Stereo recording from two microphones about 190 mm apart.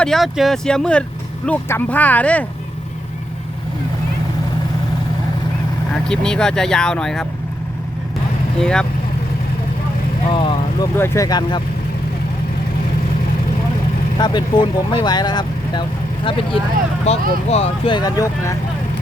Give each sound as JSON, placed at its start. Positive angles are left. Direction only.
{"t": 0.0, "sound": "speech", "side_deg": 0}
{"t": 6.1, "sound": "speech", "side_deg": 5}
{"t": 8.6, "sound": "speech", "side_deg": 5}
{"t": 10.2, "sound": "speech", "side_deg": 25}
{"t": 10.9, "sound": "speech", "side_deg": 15}
{"t": 14.2, "sound": "speech", "side_deg": 25}